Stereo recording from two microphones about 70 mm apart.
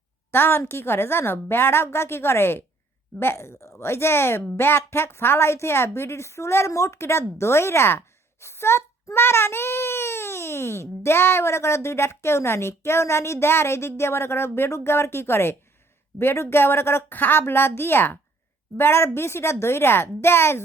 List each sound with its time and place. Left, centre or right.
0.3 s a child's voice: left